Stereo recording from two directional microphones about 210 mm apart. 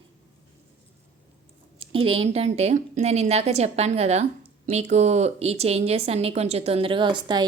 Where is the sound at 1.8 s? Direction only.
25° right (ahead or behind).